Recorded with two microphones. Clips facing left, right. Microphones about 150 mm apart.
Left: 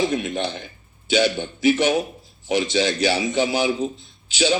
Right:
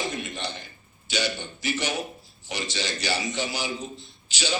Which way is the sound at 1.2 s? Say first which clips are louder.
Left 11 dB; 55° left (ahead or behind).